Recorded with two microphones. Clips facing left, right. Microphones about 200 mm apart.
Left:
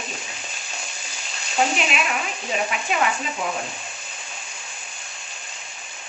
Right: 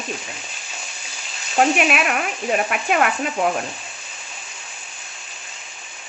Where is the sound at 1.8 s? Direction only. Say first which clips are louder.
Right 5 dB; 60° right (ahead or behind).